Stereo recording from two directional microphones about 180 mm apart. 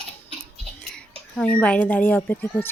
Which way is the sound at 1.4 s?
5° left (ahead or behind).